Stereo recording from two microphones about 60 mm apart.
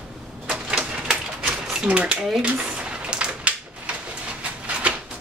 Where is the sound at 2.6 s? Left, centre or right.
Centre.